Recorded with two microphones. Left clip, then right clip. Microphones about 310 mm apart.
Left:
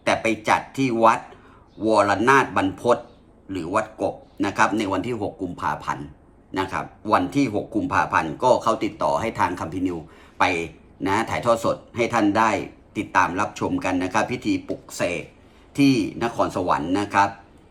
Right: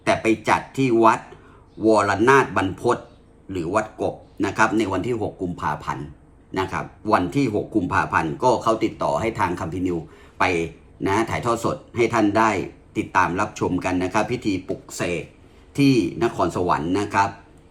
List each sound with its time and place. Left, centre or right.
0.0 s speech: centre